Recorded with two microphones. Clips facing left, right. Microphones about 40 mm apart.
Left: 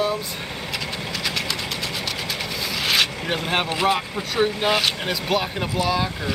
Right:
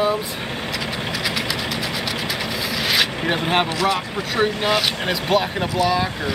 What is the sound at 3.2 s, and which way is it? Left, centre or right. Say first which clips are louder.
Speech: right 4 dB; right.